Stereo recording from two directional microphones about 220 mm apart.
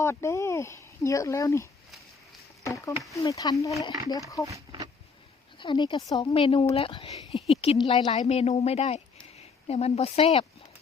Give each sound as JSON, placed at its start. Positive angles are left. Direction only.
{"t": 0.0, "sound": "speech", "side_deg": 10}
{"t": 2.6, "sound": "a sound", "side_deg": 15}
{"t": 2.9, "sound": "speech", "side_deg": 0}
{"t": 3.2, "sound": "speech", "side_deg": 15}
{"t": 4.4, "sound": "a sound", "side_deg": -15}
{"t": 5.5, "sound": "a woman's voice", "side_deg": 20}